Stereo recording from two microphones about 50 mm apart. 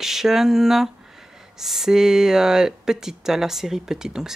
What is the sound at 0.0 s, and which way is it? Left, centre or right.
Speech, centre.